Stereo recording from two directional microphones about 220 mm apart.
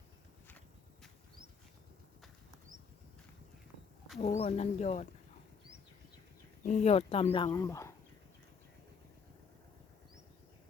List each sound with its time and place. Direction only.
4.2 s speech: 30° left (ahead or behind)
6.6 s speech: 35° left (ahead or behind); by 7.9 s 15° left (ahead or behind)